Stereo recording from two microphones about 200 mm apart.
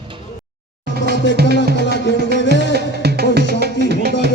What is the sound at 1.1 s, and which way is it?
Music, 60° left (ahead or behind).